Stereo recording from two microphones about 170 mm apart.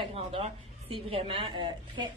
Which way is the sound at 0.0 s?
35° right (ahead or behind).